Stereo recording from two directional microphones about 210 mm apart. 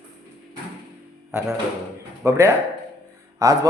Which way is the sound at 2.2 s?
15° right (ahead or behind).